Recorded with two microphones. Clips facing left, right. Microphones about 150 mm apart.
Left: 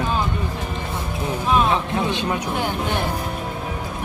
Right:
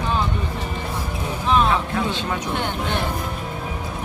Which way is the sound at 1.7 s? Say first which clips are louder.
Left 1 dB; 20° left (ahead or behind).